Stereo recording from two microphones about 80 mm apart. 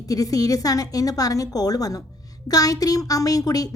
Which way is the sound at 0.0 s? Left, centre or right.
Left.